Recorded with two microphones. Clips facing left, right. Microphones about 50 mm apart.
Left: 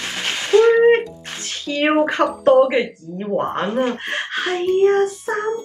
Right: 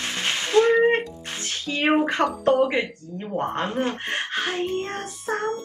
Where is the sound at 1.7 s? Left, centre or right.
Left.